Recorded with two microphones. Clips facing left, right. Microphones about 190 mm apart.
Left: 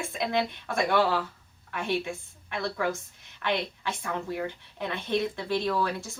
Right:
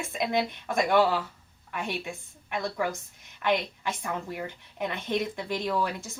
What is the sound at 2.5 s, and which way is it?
Speech, 15° right (ahead or behind).